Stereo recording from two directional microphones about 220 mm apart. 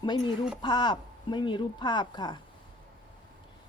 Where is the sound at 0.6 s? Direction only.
20° left (ahead or behind).